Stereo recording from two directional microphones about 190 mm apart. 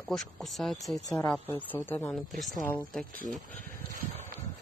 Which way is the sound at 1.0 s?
20° left (ahead or behind).